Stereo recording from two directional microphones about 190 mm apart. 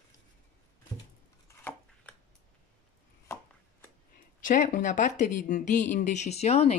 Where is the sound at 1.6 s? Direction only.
10° left (ahead or behind).